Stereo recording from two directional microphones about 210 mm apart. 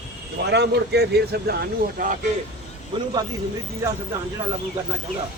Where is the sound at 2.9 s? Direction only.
20° right (ahead or behind).